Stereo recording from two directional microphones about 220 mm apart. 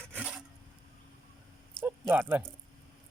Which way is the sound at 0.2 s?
5° right (ahead or behind).